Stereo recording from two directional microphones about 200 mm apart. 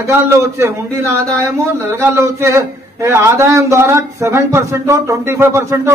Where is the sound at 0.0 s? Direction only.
15° right (ahead or behind).